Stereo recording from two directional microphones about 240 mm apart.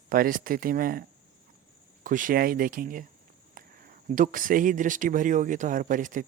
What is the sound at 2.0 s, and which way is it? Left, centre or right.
Speech, right.